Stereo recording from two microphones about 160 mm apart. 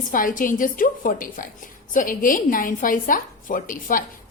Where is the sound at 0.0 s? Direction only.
55° left (ahead or behind).